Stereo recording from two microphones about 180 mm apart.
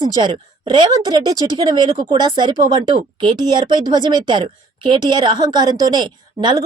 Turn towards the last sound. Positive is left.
turn(degrees=-25)  # may be behind; listen again after turning